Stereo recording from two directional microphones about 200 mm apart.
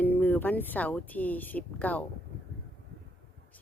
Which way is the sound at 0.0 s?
10° left (ahead or behind).